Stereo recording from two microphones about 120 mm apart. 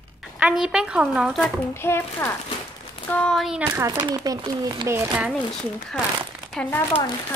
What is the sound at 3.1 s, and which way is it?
Speech, 10° left (ahead or behind).